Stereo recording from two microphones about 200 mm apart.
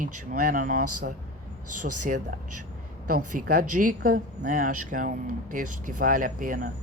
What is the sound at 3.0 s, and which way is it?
Speech, 45° right (ahead or behind).